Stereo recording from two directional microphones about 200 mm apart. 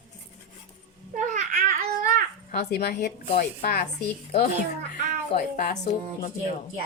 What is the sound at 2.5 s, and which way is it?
A woman's voice, 55° left (ahead or behind).